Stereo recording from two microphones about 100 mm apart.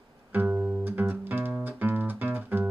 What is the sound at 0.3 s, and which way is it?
Music, 20° right (ahead or behind).